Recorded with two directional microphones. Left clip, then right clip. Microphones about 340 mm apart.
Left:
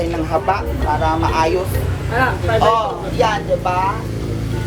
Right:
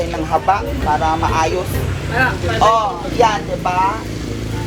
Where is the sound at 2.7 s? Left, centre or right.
Centre.